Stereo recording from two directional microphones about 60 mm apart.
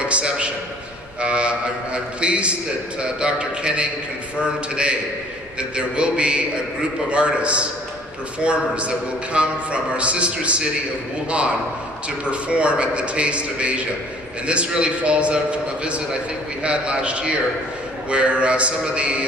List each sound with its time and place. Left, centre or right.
0.0 s a man's voice: centre
12.0 s a man's voice: centre
16.6 s a man's voice: centre